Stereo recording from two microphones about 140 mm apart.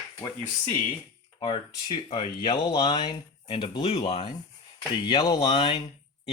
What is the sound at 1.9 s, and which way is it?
Speech, 45° left (ahead or behind).